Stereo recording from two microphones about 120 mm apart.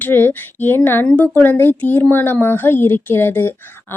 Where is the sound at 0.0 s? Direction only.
20° left (ahead or behind).